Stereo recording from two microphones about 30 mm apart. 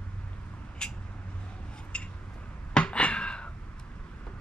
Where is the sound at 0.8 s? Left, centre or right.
Left.